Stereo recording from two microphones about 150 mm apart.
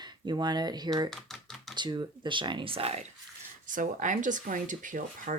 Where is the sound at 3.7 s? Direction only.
60° right (ahead or behind).